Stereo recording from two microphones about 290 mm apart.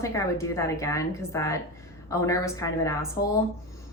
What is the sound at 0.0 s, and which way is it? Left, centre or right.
A woman's voice, centre.